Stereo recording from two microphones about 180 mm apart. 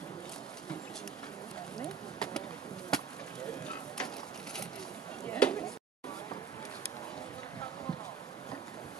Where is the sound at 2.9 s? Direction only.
5° left (ahead or behind).